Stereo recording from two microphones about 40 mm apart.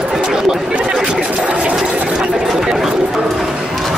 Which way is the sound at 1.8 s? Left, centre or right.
Right.